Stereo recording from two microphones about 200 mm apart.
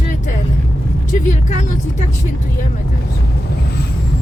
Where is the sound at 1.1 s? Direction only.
35° left (ahead or behind).